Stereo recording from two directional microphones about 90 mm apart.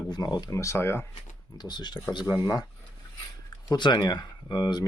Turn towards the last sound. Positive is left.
turn(degrees=50)  # may be behind; listen again after turning